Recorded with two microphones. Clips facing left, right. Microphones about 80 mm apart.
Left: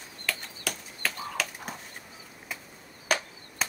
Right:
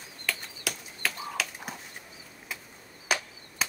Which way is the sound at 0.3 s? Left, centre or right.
Centre.